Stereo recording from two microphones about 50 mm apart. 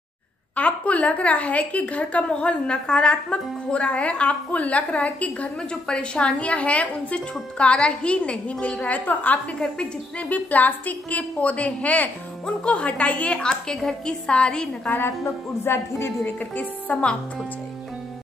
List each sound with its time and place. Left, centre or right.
0.6 s a woman's voice: left
5.6 s a woman's voice: centre
14.9 s a woman's voice: left
15.2 s speech: left
16.3 s a woman's voice: left